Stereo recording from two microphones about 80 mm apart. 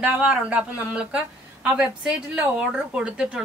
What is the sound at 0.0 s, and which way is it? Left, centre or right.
A woman's voice, centre.